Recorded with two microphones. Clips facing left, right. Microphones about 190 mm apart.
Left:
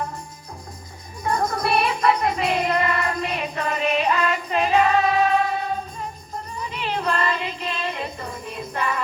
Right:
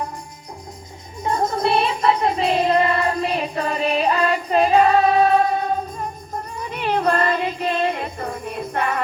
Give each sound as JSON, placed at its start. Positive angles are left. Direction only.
{"t": 1.2, "sound": "music", "side_deg": -25}